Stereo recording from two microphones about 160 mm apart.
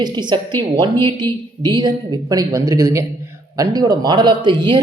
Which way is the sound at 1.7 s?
25° right (ahead or behind).